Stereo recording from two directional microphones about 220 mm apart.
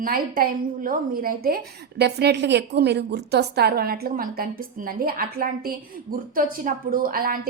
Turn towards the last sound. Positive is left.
turn(degrees=-40)  # may be behind; listen again after turning